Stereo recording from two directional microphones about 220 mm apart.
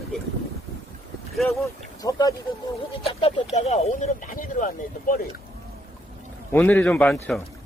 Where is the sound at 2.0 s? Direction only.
15° left (ahead or behind).